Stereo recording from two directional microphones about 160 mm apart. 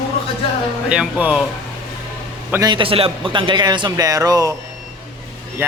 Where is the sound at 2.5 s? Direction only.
25° right (ahead or behind).